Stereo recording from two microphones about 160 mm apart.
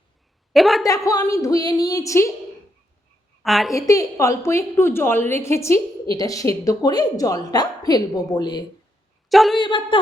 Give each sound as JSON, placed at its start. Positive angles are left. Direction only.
{"t": 0.5, "sound": "a woman's voice", "side_deg": 0}
{"t": 0.9, "sound": "a woman's voice", "side_deg": 20}
{"t": 3.4, "sound": "a woman's voice", "side_deg": 0}
{"t": 3.8, "sound": "a woman's voice", "side_deg": 20}
{"t": 9.3, "sound": "a woman's voice", "side_deg": 0}
{"t": 9.6, "sound": "speech", "side_deg": 30}